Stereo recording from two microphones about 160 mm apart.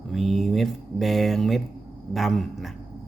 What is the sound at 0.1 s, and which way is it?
A man's voice, centre (ahead or behind).